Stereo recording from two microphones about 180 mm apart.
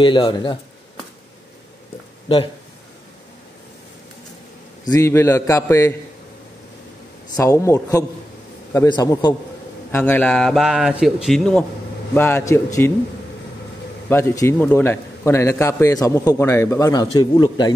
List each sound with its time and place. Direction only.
0.0 s a man's voice: 25° left (ahead or behind)
2.2 s speech: 25° left (ahead or behind)
4.8 s a man's voice: 15° left (ahead or behind)
7.3 s a man's voice: 15° left (ahead or behind)
9.8 s a man's voice: 10° left (ahead or behind)
14.0 s a man's voice: 15° left (ahead or behind)